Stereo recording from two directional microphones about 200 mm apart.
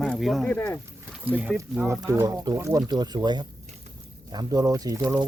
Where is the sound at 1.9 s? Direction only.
20° right (ahead or behind).